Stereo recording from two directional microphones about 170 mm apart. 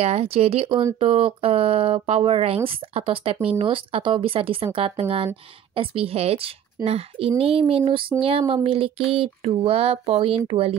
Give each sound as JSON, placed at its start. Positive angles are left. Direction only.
{"t": 0.0, "sound": "speech", "side_deg": -35}